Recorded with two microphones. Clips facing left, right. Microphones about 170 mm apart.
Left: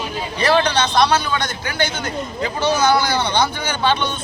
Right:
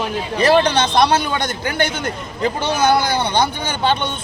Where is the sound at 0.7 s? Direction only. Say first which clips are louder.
Right 1 dB; 50° right (ahead or behind).